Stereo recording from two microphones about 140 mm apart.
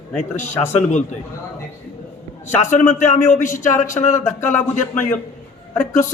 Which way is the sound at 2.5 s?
60° left (ahead or behind).